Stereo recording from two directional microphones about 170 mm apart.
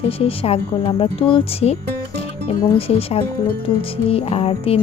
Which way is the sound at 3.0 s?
35° left (ahead or behind).